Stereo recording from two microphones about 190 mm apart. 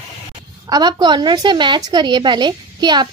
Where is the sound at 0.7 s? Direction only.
20° right (ahead or behind).